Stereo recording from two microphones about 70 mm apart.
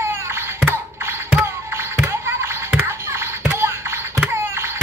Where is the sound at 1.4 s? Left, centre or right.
Right.